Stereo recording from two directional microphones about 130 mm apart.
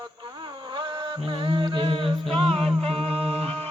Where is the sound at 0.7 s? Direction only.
35° right (ahead or behind).